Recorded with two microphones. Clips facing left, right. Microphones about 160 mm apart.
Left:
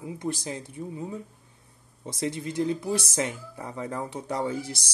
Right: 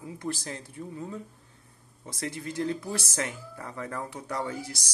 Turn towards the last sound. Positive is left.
turn(degrees=25)  # may be behind; listen again after turning